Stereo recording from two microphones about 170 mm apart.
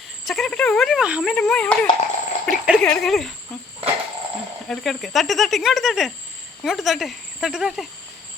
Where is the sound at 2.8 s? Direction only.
5° left (ahead or behind).